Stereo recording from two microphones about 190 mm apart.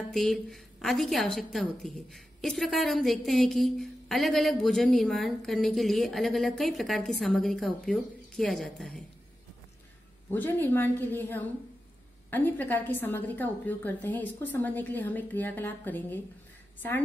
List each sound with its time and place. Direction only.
0.1 s a woman's voice: centre (ahead or behind)
10.3 s a woman's voice: 10° left (ahead or behind)